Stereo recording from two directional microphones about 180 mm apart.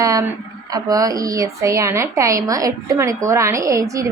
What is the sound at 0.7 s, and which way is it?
Speech, 20° right (ahead or behind).